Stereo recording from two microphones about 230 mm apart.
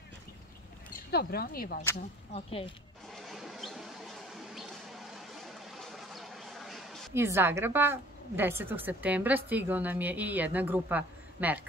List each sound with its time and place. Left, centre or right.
1.1 s speech: left
2.3 s a woman's voice: left
3.2 s a sound: centre
7.2 s a woman's voice: centre